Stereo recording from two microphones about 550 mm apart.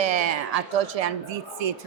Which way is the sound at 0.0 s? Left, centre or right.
Right.